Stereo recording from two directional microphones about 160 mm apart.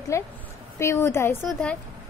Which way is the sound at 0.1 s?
20° left (ahead or behind).